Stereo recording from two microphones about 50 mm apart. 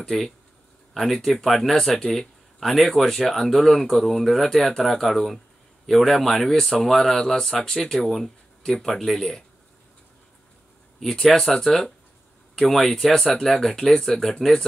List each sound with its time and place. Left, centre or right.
0.0 s speech: centre
11.0 s speech: centre